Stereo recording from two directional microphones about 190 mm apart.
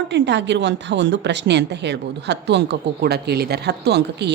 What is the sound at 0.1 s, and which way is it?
Speech, 65° right (ahead or behind).